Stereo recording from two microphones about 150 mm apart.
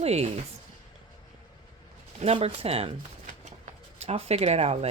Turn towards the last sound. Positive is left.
turn(degrees=-45)  # may be behind; listen again after turning